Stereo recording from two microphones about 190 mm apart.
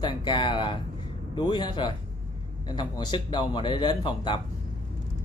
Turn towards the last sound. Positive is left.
turn(degrees=25)  # may be behind; listen again after turning